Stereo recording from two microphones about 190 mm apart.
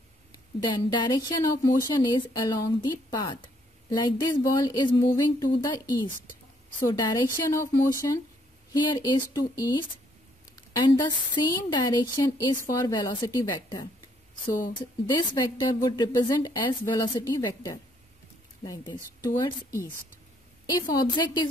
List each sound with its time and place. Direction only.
0.6 s a woman's voice: 25° left (ahead or behind)
6.9 s a woman's voice: 20° left (ahead or behind)
20.9 s a woman's voice: 20° left (ahead or behind)